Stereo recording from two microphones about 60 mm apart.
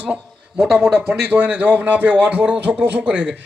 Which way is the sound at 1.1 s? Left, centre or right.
Right.